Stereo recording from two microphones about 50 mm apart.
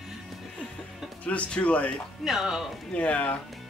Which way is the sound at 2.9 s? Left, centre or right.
Left.